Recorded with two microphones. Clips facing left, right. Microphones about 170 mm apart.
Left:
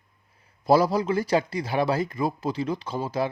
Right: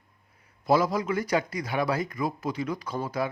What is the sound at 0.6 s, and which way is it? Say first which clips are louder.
Speech: left 3 dB; 35° left (ahead or behind).